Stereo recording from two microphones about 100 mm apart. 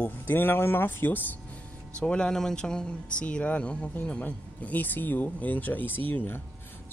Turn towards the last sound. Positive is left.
turn(degrees=20)  # may be behind; listen again after turning